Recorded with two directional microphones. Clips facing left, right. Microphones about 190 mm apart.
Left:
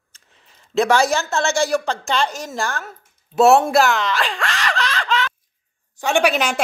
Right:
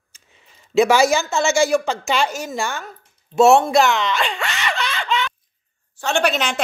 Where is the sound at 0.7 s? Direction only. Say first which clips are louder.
Right 2 dB; 5° right (ahead or behind).